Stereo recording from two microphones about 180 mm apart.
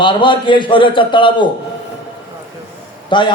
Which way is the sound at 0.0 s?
25° left (ahead or behind).